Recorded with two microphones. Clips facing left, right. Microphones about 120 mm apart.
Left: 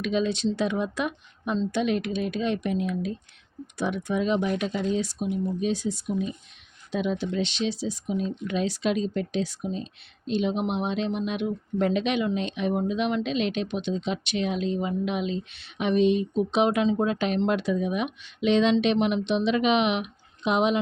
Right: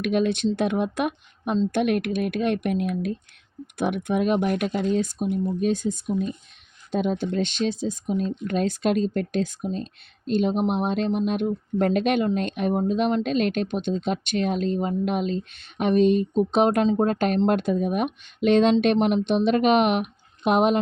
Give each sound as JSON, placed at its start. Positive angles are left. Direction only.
{"t": 0.0, "sound": "speech", "side_deg": -55}
{"t": 5.2, "sound": "speech", "side_deg": -40}